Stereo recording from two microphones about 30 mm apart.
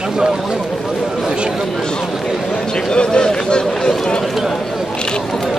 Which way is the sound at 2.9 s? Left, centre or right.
Left.